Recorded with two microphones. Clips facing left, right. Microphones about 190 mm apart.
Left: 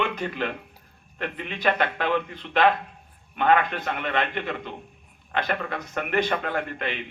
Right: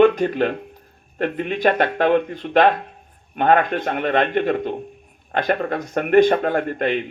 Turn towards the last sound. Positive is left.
turn(degrees=-45)  # may be behind; listen again after turning